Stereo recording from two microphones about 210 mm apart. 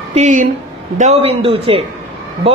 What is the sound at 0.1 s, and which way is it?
A woman's voice, 35° right (ahead or behind).